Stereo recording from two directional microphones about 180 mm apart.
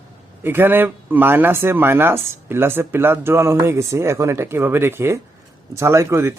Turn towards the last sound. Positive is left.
turn(degrees=-15)  # may be behind; listen again after turning